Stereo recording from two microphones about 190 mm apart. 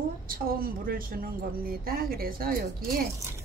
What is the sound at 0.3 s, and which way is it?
A woman's voice, 50° right (ahead or behind).